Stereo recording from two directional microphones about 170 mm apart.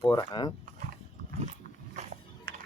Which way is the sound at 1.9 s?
55° right (ahead or behind).